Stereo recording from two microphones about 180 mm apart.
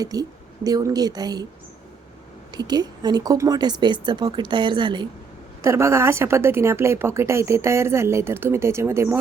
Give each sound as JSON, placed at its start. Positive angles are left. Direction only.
{"t": 0.0, "sound": "a woman's voice", "side_deg": -20}
{"t": 2.5, "sound": "a woman's voice", "side_deg": -25}
{"t": 5.6, "sound": "a woman's voice", "side_deg": -15}